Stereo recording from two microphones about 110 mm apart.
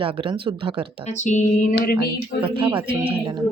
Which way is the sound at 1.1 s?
90° left.